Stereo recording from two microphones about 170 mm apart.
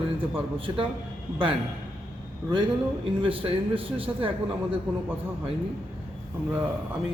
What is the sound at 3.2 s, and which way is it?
A man's voice, 30° right (ahead or behind).